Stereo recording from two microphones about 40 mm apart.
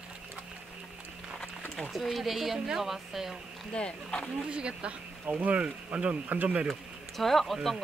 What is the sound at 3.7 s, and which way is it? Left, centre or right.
Speech, left.